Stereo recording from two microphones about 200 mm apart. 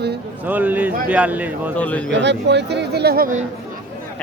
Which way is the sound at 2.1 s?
60° right (ahead or behind).